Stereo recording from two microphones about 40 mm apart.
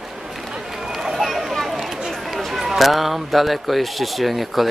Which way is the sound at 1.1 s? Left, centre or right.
Centre.